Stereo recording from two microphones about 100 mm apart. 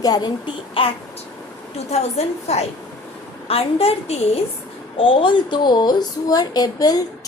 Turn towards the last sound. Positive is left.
turn(degrees=40)  # may be behind; listen again after turning